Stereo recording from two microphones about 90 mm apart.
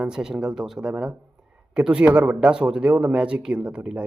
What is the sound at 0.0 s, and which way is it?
Speech, 10° right (ahead or behind).